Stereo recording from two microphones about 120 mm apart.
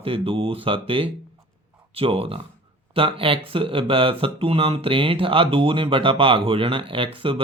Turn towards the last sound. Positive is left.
turn(degrees=-45)  # may be behind; listen again after turning